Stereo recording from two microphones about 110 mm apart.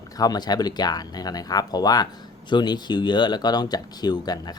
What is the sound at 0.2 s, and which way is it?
Speech, 35° left (ahead or behind).